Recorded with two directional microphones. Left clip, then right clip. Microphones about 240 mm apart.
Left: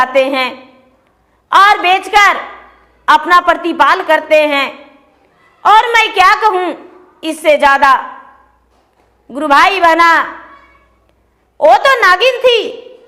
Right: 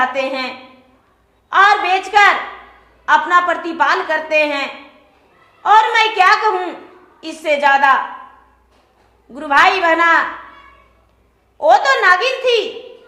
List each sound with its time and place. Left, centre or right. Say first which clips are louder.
0.0 s a woman's voice: left 7 dB; left
9.3 s a woman's voice: left 4 dB; left
11.5 s a woman's voice: left 4 dB; left